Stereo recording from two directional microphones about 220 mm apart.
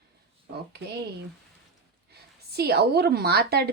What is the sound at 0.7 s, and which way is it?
Speech, 50° right (ahead or behind).